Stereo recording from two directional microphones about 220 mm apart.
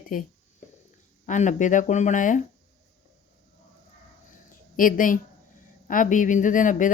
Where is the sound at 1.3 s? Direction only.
35° left (ahead or behind).